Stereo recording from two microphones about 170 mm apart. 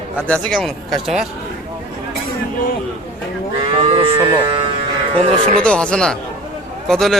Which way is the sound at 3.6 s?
35° right (ahead or behind).